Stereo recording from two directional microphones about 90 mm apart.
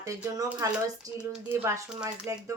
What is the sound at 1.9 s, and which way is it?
Speech, 10° right (ahead or behind).